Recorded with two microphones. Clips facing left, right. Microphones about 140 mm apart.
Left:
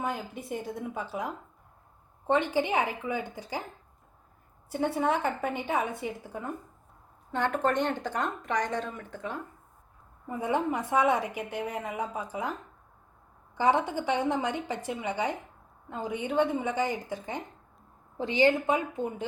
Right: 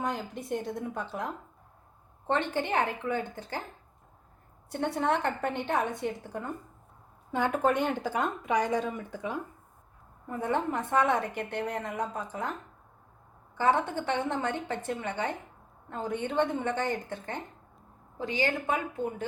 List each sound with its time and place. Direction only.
0.0 s a woman's voice: 5° left (ahead or behind)
2.2 s a woman's voice: 10° left (ahead or behind)
4.7 s a woman's voice: 5° left (ahead or behind); by 9.4 s 10° right (ahead or behind)
10.2 s a woman's voice: 10° left (ahead or behind)
13.6 s a woman's voice: 15° left (ahead or behind)
18.2 s a woman's voice: 25° left (ahead or behind)